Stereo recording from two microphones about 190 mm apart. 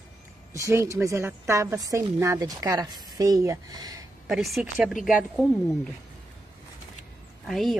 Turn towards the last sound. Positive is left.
turn(degrees=0)  # may be behind; listen again after turning